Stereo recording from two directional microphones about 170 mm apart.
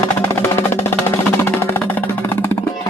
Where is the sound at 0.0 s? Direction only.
15° left (ahead or behind).